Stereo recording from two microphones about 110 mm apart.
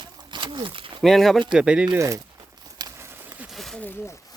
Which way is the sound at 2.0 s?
30° right (ahead or behind).